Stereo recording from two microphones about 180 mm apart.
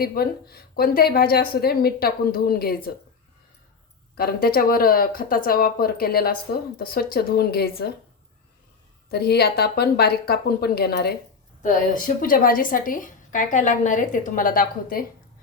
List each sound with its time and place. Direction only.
0.0 s a woman's voice: 55° left (ahead or behind)
4.2 s a woman's voice: 55° left (ahead or behind)
9.0 s a woman's voice: 65° left (ahead or behind)
11.6 s a woman's voice: 45° left (ahead or behind)